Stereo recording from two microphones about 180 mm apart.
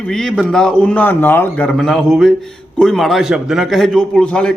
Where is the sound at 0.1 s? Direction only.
5° left (ahead or behind).